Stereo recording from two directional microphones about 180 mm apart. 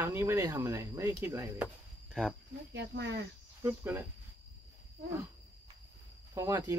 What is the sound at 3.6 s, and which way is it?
Speech, 10° right (ahead or behind).